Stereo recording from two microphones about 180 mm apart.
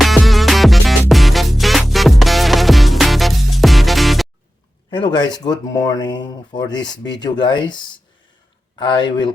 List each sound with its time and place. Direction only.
0.0 s music: centre (ahead or behind)
4.9 s speech: 25° left (ahead or behind)
8.8 s speech: 25° left (ahead or behind)